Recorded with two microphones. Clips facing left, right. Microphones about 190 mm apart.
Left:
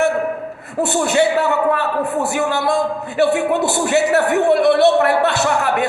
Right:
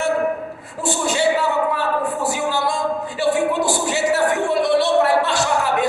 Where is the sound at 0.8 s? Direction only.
60° left (ahead or behind).